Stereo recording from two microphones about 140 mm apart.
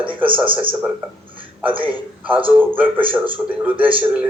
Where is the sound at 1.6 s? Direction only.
10° right (ahead or behind).